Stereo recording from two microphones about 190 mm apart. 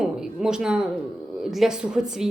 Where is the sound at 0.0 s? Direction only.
5° right (ahead or behind).